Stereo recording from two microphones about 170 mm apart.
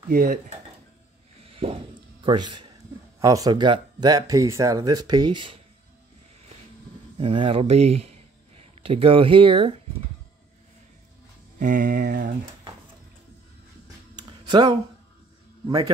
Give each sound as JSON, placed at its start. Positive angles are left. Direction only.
{"t": 0.1, "sound": "mantra", "side_deg": -55}
{"t": 1.4, "sound": "a sound", "side_deg": -35}
{"t": 2.2, "sound": "a man's voice", "side_deg": -25}
{"t": 7.2, "sound": "speech", "side_deg": -30}
{"t": 11.6, "sound": "mantra", "side_deg": -55}
{"t": 14.1, "sound": "a sound", "side_deg": -25}
{"t": 15.6, "sound": "a man's voice", "side_deg": -20}